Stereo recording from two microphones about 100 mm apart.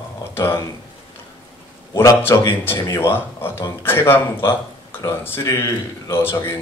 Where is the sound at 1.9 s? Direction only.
30° left (ahead or behind).